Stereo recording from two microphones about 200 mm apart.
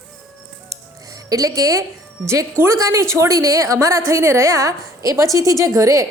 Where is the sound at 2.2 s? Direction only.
15° right (ahead or behind).